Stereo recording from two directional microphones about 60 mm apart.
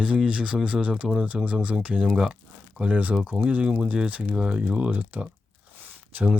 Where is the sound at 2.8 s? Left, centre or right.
Right.